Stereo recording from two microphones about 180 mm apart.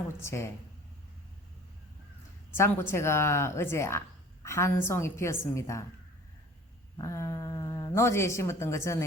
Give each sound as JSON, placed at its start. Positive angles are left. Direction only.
{"t": 0.2, "sound": "a woman's voice", "side_deg": 15}
{"t": 2.6, "sound": "a woman's voice", "side_deg": 15}
{"t": 7.0, "sound": "speech", "side_deg": 15}